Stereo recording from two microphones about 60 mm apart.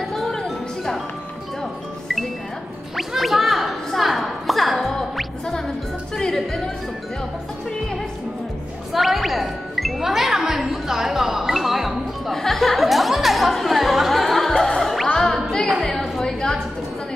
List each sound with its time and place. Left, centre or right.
0.1 s music: centre
3.0 s gargling: centre
6.1 s music: centre
8.9 s music: centre
15.8 s a sound: centre